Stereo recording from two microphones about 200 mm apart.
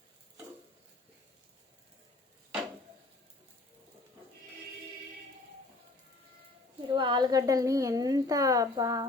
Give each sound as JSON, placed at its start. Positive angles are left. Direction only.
{"t": 6.8, "sound": "a woman's voice", "side_deg": -25}